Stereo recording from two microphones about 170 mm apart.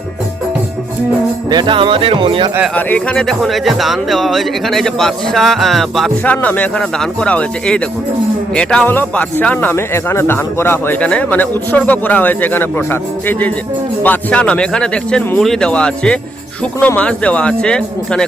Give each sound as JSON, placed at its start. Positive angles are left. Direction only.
{"t": 1.5, "sound": "music", "side_deg": -25}
{"t": 2.7, "sound": "speech", "side_deg": 10}